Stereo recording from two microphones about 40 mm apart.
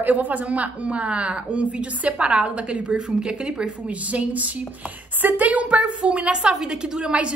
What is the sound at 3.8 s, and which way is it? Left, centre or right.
A woman's voice, right.